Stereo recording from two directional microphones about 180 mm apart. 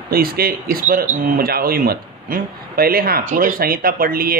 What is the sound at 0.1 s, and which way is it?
Speech, 55° right (ahead or behind).